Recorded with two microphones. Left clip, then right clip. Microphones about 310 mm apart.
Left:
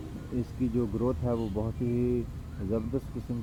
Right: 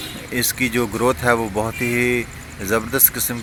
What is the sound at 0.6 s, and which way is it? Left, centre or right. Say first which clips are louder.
Speech: right 11 dB; right.